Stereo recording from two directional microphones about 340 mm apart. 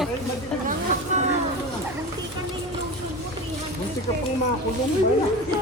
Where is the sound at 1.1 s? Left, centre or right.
Centre.